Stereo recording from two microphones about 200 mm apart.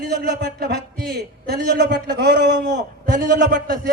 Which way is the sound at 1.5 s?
55° right (ahead or behind).